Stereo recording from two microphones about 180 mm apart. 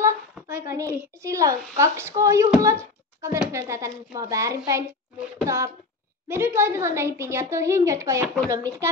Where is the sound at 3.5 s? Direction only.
15° right (ahead or behind).